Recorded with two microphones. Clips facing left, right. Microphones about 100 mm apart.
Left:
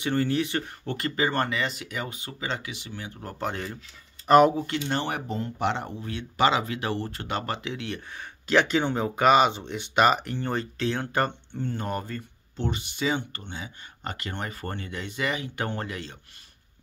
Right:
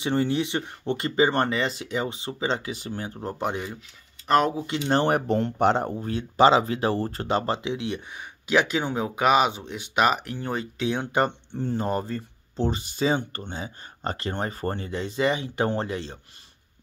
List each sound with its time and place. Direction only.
0.0 s speech: 25° right (ahead or behind); by 3.2 s 40° right (ahead or behind)
3.2 s speech: 20° right (ahead or behind)
4.3 s speech: 5° left (ahead or behind)
4.8 s speech: 45° right (ahead or behind)
5.6 s speech: 40° right (ahead or behind); by 11.3 s 20° right (ahead or behind)
11.5 s speech: 30° right (ahead or behind)